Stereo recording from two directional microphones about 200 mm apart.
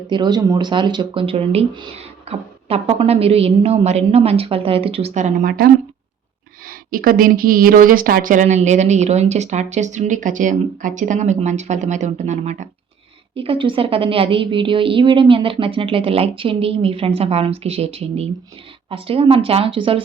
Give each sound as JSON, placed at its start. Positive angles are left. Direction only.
{"t": 0.1, "sound": "a woman's voice", "side_deg": -20}
{"t": 13.3, "sound": "a woman's voice", "side_deg": -25}